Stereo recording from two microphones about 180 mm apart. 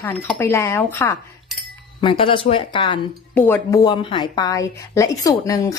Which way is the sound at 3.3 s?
10° left (ahead or behind).